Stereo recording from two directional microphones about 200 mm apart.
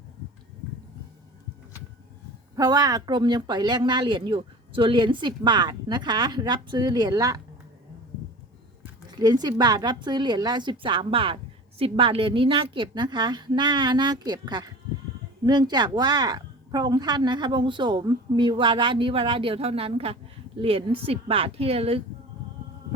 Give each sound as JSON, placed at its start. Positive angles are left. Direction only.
{"t": 2.6, "sound": "speech", "side_deg": -20}
{"t": 9.1, "sound": "speech", "side_deg": -20}